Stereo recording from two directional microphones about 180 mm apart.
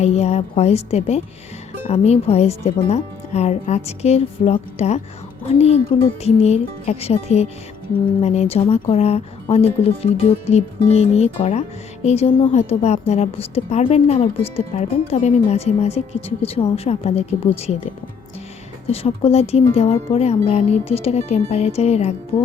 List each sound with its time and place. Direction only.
0.0 s a woman's voice: 35° left (ahead or behind)
18.9 s a woman's voice: 35° left (ahead or behind)